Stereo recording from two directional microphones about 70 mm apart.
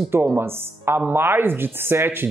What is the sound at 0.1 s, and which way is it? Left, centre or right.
Speech, right.